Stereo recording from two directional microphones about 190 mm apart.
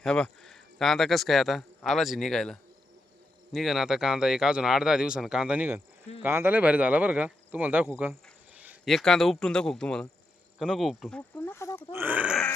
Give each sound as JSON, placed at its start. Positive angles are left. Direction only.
{"t": 0.0, "sound": "speech", "side_deg": 5}
{"t": 11.3, "sound": "a sound", "side_deg": 15}
{"t": 11.9, "sound": "speech", "side_deg": -10}